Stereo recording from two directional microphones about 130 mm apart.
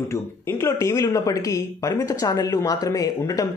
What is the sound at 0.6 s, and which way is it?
Speech, 20° left (ahead or behind).